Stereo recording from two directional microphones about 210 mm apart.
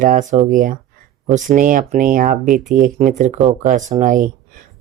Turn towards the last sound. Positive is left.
turn(degrees=-40)  # may be behind; listen again after turning